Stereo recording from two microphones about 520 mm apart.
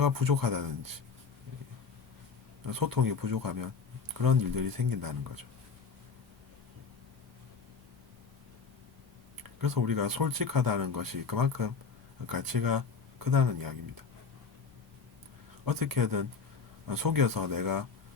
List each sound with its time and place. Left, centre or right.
0.0 s speech: right
2.6 s speech: right
9.4 s speech: right
15.6 s speech: right